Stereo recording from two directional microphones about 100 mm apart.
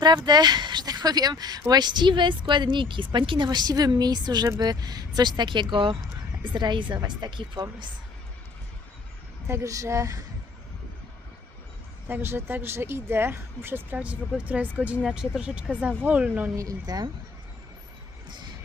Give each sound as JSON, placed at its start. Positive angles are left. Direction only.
{"t": 0.3, "sound": "a woman's voice", "side_deg": -45}
{"t": 5.4, "sound": "speech", "side_deg": -55}
{"t": 9.5, "sound": "a woman's voice", "side_deg": -30}
{"t": 12.0, "sound": "speech", "side_deg": -20}
{"t": 16.6, "sound": "a woman's voice", "side_deg": -40}